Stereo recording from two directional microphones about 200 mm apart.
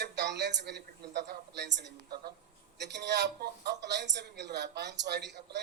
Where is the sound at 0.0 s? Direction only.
55° right (ahead or behind).